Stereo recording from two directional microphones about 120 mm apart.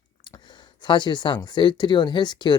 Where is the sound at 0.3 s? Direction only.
40° left (ahead or behind).